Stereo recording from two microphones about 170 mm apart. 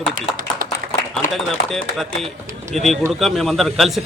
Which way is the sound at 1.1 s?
Centre (ahead or behind).